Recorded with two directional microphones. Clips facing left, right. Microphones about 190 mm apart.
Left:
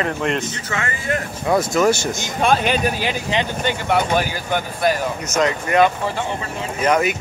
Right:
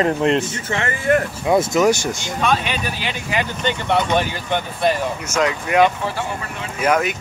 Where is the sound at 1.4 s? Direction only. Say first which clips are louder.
Even; 25° right (ahead or behind).